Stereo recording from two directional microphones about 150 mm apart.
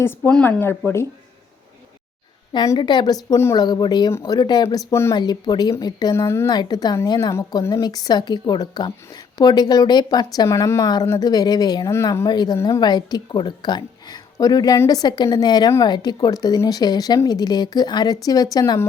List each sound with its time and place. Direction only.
0.2 s speech: 5° left (ahead or behind)
2.5 s a woman's voice: 30° left (ahead or behind)
4.1 s speech: 15° left (ahead or behind)
4.4 s a woman's voice: 30° left (ahead or behind)
4.9 s speech: 15° left (ahead or behind)
5.1 s a woman's voice: 30° left (ahead or behind)